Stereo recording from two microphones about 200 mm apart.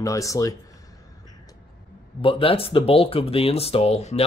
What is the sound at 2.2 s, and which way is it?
Speech, 25° left (ahead or behind).